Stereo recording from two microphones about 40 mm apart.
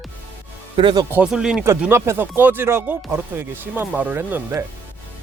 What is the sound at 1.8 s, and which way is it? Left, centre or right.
Speech, right.